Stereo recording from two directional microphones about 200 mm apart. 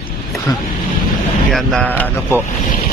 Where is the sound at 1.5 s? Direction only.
Centre (ahead or behind).